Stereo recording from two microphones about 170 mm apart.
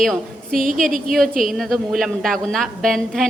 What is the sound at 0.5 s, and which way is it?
Speech, 50° right (ahead or behind).